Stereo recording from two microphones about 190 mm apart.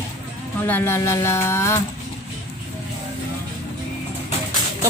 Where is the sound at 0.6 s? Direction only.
10° left (ahead or behind).